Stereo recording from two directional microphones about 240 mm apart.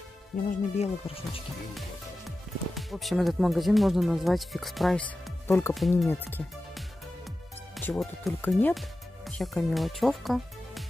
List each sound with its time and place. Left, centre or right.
0.5 s speech: left
1.8 s speech: centre
5.5 s speech: centre
5.8 s speech: centre